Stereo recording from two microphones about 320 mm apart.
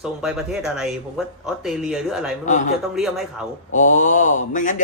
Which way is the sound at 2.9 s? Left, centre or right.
Centre.